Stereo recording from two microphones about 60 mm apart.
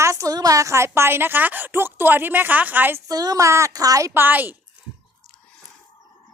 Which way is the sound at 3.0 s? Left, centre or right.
Right.